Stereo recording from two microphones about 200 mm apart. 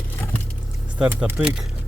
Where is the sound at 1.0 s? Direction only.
10° right (ahead or behind).